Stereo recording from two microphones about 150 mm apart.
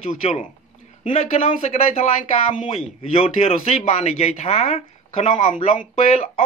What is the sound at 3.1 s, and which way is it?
Speech, 40° left (ahead or behind).